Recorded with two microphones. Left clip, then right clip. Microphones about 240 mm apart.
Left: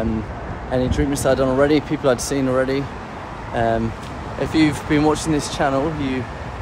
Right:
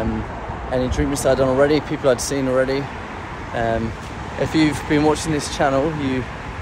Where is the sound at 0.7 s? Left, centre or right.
Centre.